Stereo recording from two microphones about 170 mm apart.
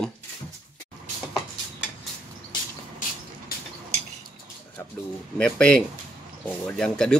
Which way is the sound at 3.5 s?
60° left (ahead or behind).